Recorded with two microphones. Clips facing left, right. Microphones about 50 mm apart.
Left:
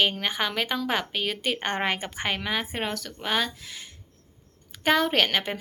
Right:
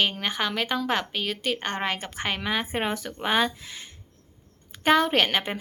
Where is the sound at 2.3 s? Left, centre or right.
Centre.